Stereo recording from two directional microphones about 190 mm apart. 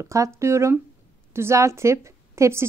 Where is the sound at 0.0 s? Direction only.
15° right (ahead or behind).